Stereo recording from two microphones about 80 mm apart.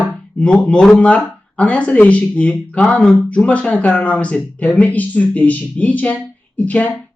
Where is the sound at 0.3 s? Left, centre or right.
Centre.